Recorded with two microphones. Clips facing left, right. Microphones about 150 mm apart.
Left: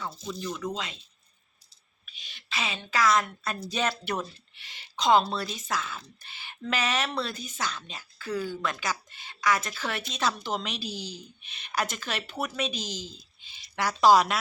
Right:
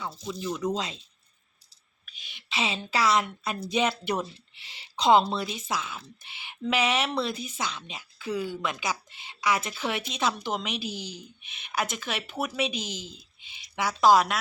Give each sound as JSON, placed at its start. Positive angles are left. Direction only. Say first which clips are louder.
{"t": 0.0, "sound": "a woman's voice", "louder": "right 1 dB", "side_deg": -10}
{"t": 0.7, "sound": "speech", "louder": "right 5 dB", "side_deg": -35}
{"t": 2.1, "sound": "a sound", "louder": "even", "side_deg": -10}
{"t": 2.5, "sound": "a woman's voice", "louder": "right 3 dB", "side_deg": -25}
{"t": 10.8, "sound": "a woman's voice", "louder": "right 1 dB", "side_deg": -55}
{"t": 11.8, "sound": "a woman's voice", "louder": "even", "side_deg": -10}
{"t": 12.8, "sound": "a woman's voice", "louder": "even", "side_deg": -60}
{"t": 13.8, "sound": "speech", "louder": "even", "side_deg": 0}